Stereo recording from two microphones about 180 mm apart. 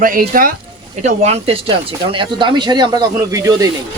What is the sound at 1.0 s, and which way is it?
Speech, 35° right (ahead or behind).